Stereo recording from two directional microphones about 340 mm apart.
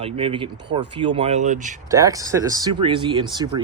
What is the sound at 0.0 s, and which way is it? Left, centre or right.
Speech, centre.